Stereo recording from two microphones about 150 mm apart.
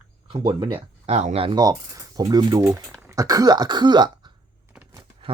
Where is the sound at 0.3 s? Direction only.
35° right (ahead or behind).